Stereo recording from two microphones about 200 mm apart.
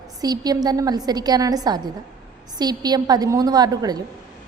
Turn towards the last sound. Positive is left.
turn(degrees=-20)  # may be behind; listen again after turning